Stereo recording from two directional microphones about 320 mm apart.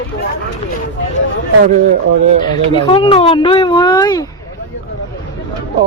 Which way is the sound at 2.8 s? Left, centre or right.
Centre.